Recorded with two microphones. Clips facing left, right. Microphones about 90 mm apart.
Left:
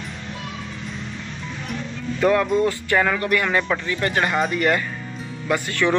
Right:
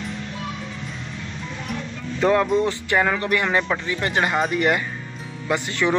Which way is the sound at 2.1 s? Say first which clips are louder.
Even; 25° right (ahead or behind).